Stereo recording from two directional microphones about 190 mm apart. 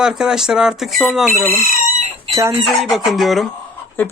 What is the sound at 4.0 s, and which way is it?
Speech, 10° left (ahead or behind).